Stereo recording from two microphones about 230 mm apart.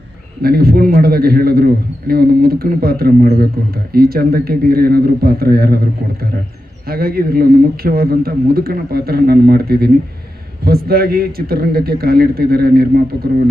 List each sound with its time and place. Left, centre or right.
0.4 s speech: right